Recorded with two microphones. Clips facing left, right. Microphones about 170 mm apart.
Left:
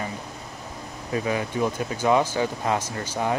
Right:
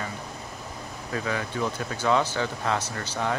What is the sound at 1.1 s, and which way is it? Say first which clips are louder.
Speech: left 4 dB; 20° left (ahead or behind).